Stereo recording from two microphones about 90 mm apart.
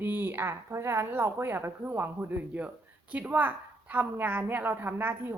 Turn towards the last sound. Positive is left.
turn(degrees=-25)  # may be behind; listen again after turning